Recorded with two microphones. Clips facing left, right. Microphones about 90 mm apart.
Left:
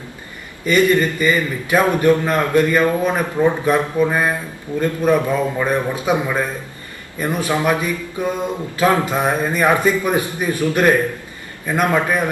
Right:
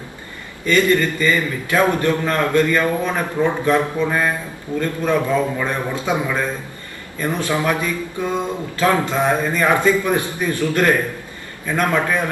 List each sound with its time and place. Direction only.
0.6 s a man's voice: 15° left (ahead or behind)